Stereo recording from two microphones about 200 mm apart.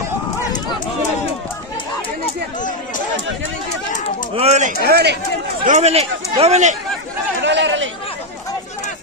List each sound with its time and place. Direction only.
4.4 s speech: 35° right (ahead or behind)
4.8 s speech: 50° right (ahead or behind)
5.7 s speech: 35° right (ahead or behind)
7.4 s chatter: 65° right (ahead or behind)